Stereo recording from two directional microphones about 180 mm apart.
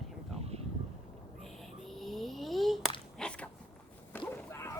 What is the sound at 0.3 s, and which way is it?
Vehicle, 35° right (ahead or behind).